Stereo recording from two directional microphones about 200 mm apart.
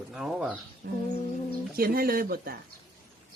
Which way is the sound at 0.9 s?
50° right (ahead or behind).